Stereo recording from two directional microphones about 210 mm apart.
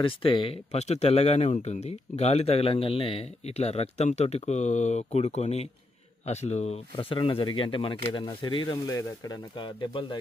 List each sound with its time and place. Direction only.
0.0 s speech: 25° left (ahead or behind)